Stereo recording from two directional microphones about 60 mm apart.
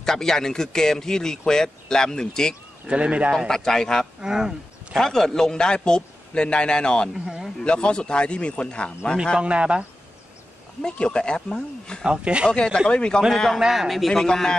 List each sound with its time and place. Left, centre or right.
0.0 s a man's voice: centre
2.9 s speech: centre
3.4 s a man's voice: centre
4.2 s speech: centre
5.0 s a man's voice: centre
7.2 s speech: centre
7.6 s a man's voice: centre
9.1 s a man's voice: centre
9.4 s speech: centre
10.8 s a man's voice: centre
12.0 s speech: centre
12.4 s a man's voice: centre
13.3 s a man's voice: centre